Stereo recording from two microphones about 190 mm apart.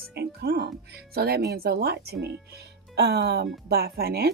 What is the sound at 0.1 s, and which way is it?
Music, 60° right (ahead or behind).